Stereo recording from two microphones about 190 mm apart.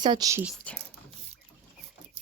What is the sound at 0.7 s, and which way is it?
Speech, 5° left (ahead or behind).